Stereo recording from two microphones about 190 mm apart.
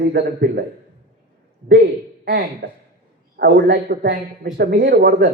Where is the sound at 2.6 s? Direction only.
60° right (ahead or behind).